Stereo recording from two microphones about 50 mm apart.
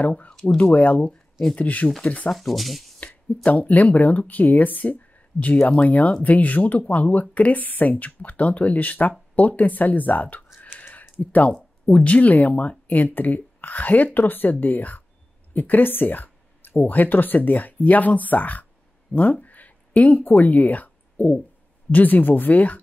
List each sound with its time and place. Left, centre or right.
0.3 s speech: centre
0.6 s speech: left
2.3 s speech: centre
3.6 s speech: left
10.9 s a sound: left
11.9 s speech: left
19.4 s a sound: left
21.9 s speech: left